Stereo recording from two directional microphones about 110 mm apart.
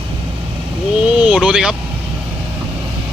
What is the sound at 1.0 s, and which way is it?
Speech, 10° right (ahead or behind).